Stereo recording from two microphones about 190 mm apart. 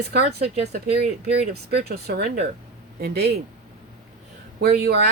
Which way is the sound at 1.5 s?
60° right (ahead or behind).